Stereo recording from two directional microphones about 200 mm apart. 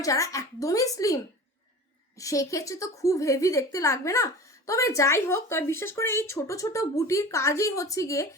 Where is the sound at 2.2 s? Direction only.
15° left (ahead or behind).